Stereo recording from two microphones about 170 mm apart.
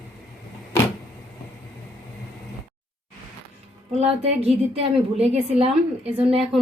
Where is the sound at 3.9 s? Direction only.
35° right (ahead or behind).